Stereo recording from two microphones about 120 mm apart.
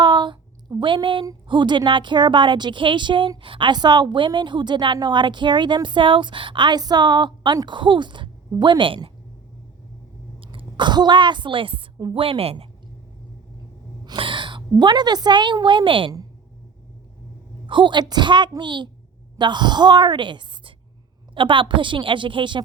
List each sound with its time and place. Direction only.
0.0 s a sound: 40° right (ahead or behind)
1.5 s a woman's voice: 40° right (ahead or behind)
10.4 s a woman's voice: 45° right (ahead or behind)
14.0 s a woman's voice: 40° right (ahead or behind)
17.7 s a woman's voice: 40° right (ahead or behind)